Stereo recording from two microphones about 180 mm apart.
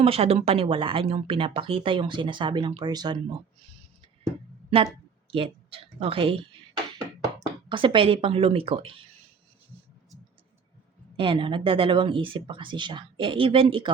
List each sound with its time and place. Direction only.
0.0 s speech: 30° right (ahead or behind)
5.3 s speech: 30° right (ahead or behind)
11.2 s speech: 30° right (ahead or behind)